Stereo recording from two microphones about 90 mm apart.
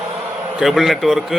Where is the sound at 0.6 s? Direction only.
Centre (ahead or behind).